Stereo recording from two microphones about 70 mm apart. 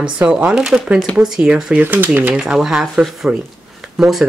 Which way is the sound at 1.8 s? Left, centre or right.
Right.